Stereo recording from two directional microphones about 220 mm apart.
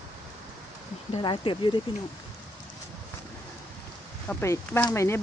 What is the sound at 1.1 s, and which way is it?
Speech, 20° left (ahead or behind).